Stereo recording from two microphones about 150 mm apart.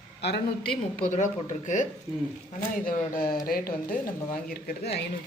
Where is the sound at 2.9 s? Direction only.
75° left (ahead or behind).